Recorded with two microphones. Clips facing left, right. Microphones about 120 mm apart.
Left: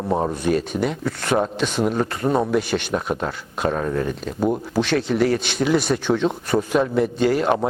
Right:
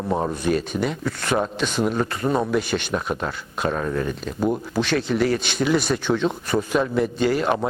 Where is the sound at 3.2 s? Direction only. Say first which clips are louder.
Left 2 dB; 40° left (ahead or behind).